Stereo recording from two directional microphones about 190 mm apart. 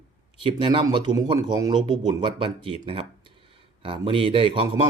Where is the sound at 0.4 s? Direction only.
25° right (ahead or behind).